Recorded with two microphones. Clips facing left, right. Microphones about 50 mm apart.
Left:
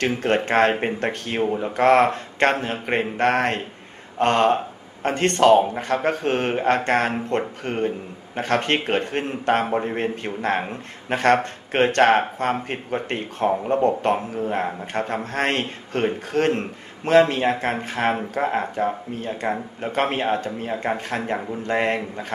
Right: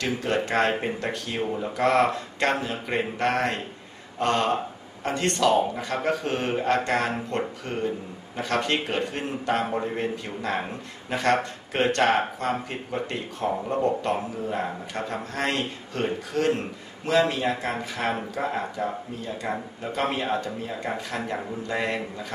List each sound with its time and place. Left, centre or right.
0.0 s a man's voice: left
1.4 s speech: left
1.8 s a man's voice: left